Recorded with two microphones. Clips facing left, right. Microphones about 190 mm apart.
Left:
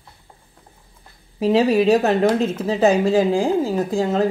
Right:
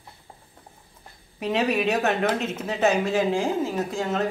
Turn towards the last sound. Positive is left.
turn(degrees=35)  # may be behind; listen again after turning